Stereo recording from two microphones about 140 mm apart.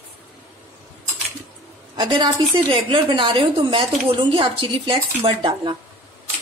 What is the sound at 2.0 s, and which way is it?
A woman's voice, 35° right (ahead or behind).